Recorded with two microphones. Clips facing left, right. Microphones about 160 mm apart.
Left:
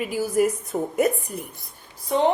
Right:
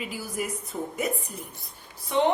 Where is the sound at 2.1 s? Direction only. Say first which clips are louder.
Left 2 dB; 40° left (ahead or behind).